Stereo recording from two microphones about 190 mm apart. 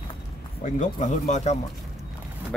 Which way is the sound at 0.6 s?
40° left (ahead or behind).